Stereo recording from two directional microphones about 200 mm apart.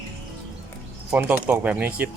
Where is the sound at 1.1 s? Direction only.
10° right (ahead or behind).